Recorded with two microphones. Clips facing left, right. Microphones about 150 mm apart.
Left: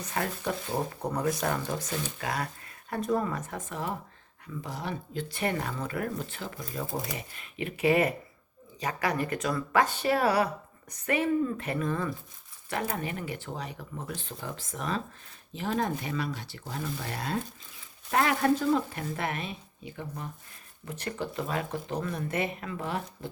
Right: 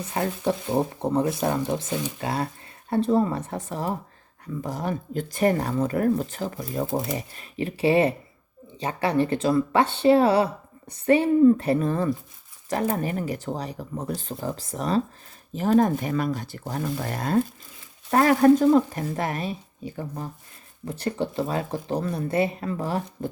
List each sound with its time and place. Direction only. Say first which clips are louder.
0.1 s speech: right 6 dB; 25° right (ahead or behind)